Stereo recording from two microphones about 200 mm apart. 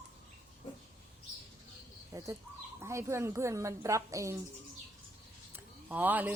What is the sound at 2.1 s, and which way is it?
Speech, 15° right (ahead or behind).